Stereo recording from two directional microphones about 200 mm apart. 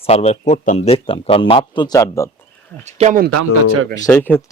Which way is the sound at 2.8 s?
40° right (ahead or behind).